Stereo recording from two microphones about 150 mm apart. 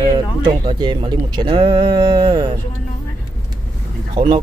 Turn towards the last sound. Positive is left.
turn(degrees=-35)  # may be behind; listen again after turning